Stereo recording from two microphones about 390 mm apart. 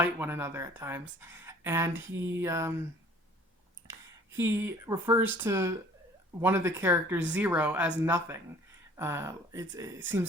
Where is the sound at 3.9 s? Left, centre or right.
Centre.